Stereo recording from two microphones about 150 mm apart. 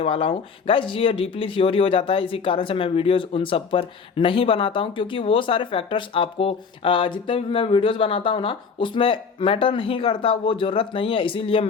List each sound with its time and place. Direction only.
0.0 s speech: 35° left (ahead or behind)